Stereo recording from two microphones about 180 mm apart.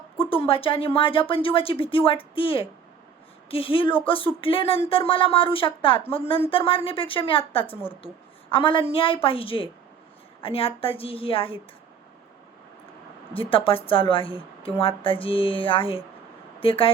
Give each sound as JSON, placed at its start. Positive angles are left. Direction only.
{"t": 0.4, "sound": "a woman's voice", "side_deg": 30}
{"t": 13.3, "sound": "a woman's voice", "side_deg": 30}